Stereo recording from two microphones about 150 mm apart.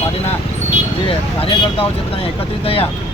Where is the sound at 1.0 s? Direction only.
40° left (ahead or behind).